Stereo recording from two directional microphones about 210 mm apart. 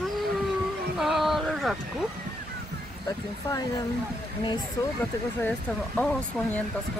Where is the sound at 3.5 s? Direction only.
15° left (ahead or behind).